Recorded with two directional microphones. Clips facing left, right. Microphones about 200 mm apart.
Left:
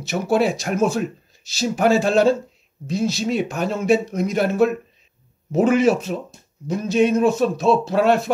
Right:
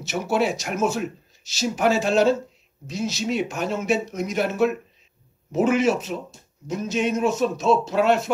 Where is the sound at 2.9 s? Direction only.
30° left (ahead or behind).